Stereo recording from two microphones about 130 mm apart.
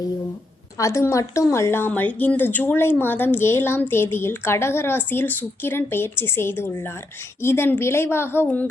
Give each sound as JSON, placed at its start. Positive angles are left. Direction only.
{"t": 0.8, "sound": "a woman's voice", "side_deg": 25}